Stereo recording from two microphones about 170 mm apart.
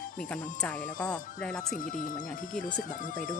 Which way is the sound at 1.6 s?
50° left (ahead or behind).